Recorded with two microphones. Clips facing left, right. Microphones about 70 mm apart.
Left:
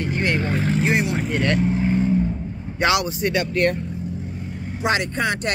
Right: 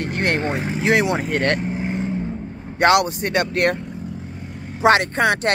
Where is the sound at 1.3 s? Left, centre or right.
Right.